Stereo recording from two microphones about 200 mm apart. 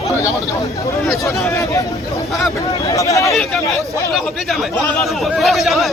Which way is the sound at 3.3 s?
Centre (ahead or behind).